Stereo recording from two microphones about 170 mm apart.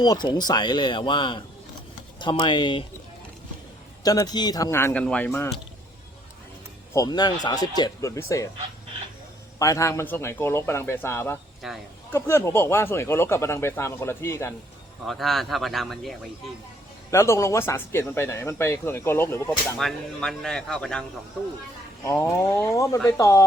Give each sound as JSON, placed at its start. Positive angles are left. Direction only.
{"t": 0.0, "sound": "speech", "side_deg": 25}
{"t": 4.0, "sound": "speech", "side_deg": 20}
{"t": 6.9, "sound": "speech", "side_deg": 20}
{"t": 9.6, "sound": "speech", "side_deg": 20}
{"t": 11.6, "sound": "speech", "side_deg": 0}
{"t": 12.1, "sound": "speech", "side_deg": 15}
{"t": 15.0, "sound": "speech", "side_deg": 0}
{"t": 17.1, "sound": "speech", "side_deg": 15}
{"t": 19.8, "sound": "speech", "side_deg": 0}
{"t": 22.0, "sound": "speech", "side_deg": 20}